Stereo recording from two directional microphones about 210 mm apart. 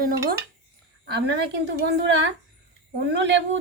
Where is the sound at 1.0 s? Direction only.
50° right (ahead or behind).